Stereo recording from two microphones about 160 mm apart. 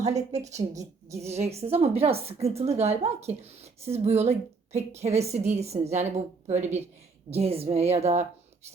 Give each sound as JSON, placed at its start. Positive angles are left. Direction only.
{"t": 0.0, "sound": "a woman's voice", "side_deg": -45}